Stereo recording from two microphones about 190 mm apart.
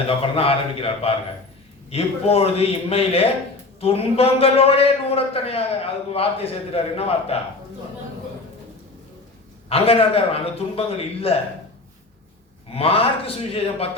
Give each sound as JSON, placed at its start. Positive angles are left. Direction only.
{"t": 0.2, "sound": "a man's voice", "side_deg": 30}
{"t": 9.6, "sound": "a man's voice", "side_deg": 30}
{"t": 12.7, "sound": "a man's voice", "side_deg": 30}